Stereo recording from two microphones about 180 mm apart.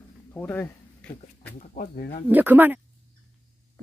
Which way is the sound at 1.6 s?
50° left (ahead or behind).